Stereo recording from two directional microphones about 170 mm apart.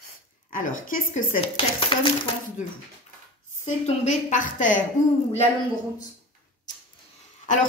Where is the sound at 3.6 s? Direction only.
45° left (ahead or behind).